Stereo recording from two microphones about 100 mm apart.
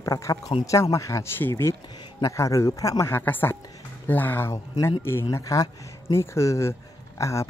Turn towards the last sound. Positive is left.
turn(degrees=30)  # may be behind; listen again after turning